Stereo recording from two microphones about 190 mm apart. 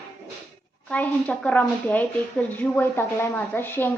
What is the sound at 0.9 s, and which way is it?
Speech, 5° left (ahead or behind).